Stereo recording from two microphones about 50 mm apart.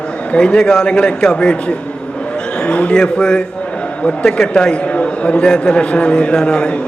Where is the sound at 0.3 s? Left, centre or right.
Centre.